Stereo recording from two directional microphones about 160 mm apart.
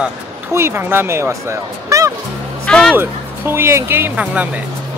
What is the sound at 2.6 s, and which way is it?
Music, 5° left (ahead or behind).